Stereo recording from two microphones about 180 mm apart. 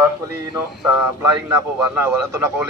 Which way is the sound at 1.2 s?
15° right (ahead or behind).